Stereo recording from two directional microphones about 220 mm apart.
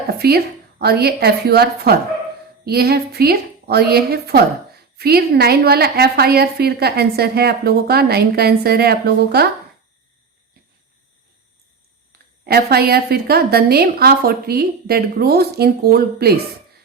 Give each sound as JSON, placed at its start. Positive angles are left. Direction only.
{"t": 0.1, "sound": "a woman's voice", "side_deg": -45}
{"t": 12.5, "sound": "a woman's voice", "side_deg": -45}